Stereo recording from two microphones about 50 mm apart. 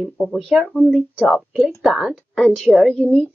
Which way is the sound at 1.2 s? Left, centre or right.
Centre.